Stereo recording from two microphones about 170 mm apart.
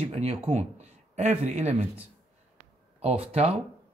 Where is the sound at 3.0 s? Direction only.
40° right (ahead or behind).